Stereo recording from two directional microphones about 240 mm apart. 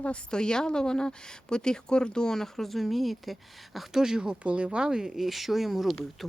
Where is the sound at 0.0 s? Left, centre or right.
Centre.